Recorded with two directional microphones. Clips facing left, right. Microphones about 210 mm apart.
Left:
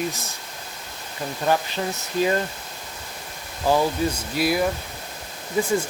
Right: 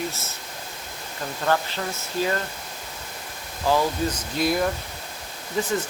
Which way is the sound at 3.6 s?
15° left (ahead or behind).